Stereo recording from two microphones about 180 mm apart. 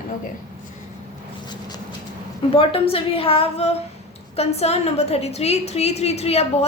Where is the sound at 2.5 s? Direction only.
30° left (ahead or behind).